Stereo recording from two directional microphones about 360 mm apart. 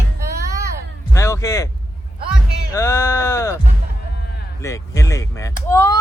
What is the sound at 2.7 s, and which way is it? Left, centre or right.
Speech, centre.